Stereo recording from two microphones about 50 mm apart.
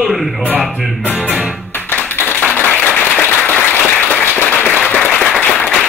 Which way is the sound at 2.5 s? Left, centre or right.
Left.